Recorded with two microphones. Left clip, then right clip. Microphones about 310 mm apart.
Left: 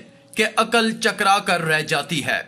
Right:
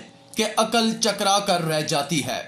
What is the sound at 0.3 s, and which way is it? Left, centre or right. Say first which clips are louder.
A man's voice: left 3 dB; left.